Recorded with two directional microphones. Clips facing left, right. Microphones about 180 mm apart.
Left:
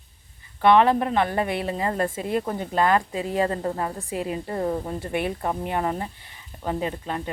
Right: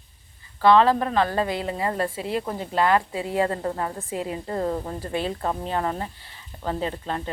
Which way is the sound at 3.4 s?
25° left (ahead or behind).